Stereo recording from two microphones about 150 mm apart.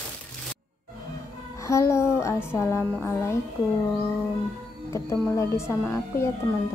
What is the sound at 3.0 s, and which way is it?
Speech, 15° left (ahead or behind).